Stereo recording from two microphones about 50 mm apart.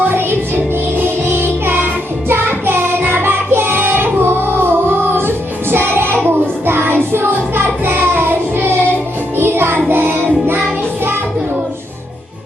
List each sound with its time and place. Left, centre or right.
0.1 s music: right
6.7 s child singing: right
9.4 s music: right